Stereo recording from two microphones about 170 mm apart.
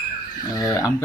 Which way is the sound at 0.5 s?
20° left (ahead or behind).